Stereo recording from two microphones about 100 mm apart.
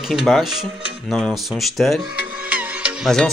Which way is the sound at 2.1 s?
15° right (ahead or behind).